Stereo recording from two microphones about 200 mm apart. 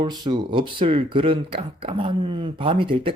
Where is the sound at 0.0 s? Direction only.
20° right (ahead or behind).